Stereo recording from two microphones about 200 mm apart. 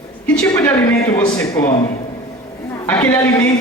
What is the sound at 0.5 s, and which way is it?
A man's voice, 10° left (ahead or behind).